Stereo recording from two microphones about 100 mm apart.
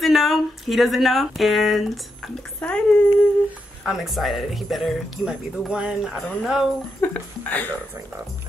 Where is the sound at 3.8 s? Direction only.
5° right (ahead or behind).